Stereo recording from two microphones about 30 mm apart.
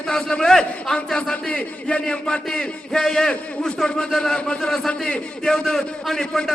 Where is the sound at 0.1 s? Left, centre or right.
Left.